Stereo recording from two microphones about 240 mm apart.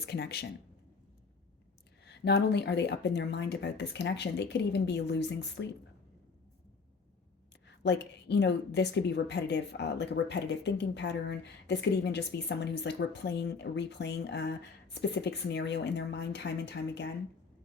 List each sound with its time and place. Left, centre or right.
0.0 s speech: left
2.0 s a woman's voice: left
7.8 s a woman's voice: left